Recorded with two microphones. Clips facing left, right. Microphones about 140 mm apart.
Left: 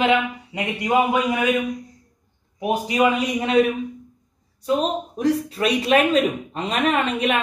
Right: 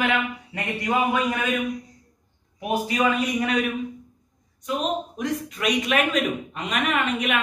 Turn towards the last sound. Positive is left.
turn(degrees=30)  # may be behind; listen again after turning